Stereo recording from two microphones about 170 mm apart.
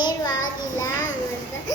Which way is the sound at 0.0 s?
20° left (ahead or behind).